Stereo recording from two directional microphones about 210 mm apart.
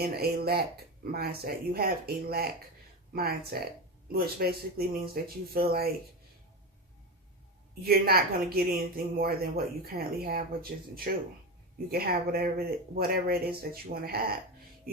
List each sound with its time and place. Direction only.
0.0 s speech: 45° right (ahead or behind)
7.9 s speech: 45° right (ahead or behind)